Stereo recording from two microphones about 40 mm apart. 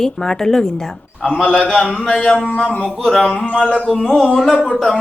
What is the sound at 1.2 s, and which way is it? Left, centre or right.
Speech, centre.